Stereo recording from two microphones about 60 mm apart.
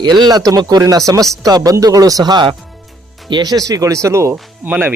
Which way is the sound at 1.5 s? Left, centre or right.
Right.